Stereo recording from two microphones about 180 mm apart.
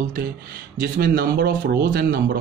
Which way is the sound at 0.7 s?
55° right (ahead or behind).